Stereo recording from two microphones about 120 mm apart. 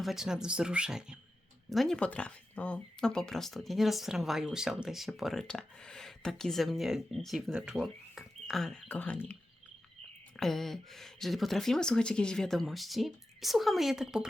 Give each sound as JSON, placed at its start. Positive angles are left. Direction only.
{"t": 0.0, "sound": "speech", "side_deg": -5}
{"t": 8.9, "sound": "speech", "side_deg": 15}